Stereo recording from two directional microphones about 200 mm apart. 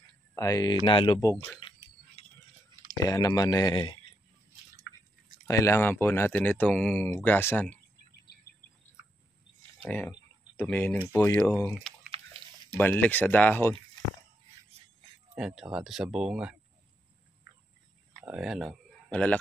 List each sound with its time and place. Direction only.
0.3 s speech: 15° left (ahead or behind)
1.6 s a sound: 25° left (ahead or behind)
3.1 s speech: 20° left (ahead or behind)
5.5 s speech: 15° left (ahead or behind)
9.8 s speech: 10° left (ahead or behind)
11.7 s a sound: centre (ahead or behind)
12.7 s speech: 10° left (ahead or behind)
15.3 s speech: 5° right (ahead or behind)
18.2 s speech: 5° right (ahead or behind)